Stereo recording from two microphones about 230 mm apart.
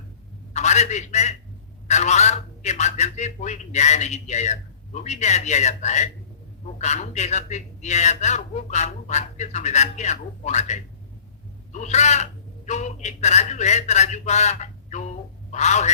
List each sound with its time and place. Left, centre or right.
0.5 s a man's voice: left